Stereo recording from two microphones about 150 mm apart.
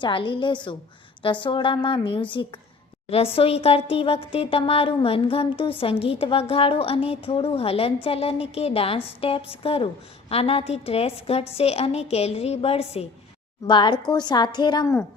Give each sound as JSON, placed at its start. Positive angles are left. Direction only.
{"t": 0.0, "sound": "a woman's voice", "side_deg": 35}
{"t": 13.7, "sound": "a woman's voice", "side_deg": 30}